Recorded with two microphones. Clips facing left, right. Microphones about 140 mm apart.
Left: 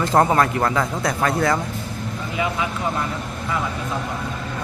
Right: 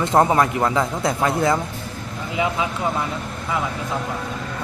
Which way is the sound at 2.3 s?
20° right (ahead or behind).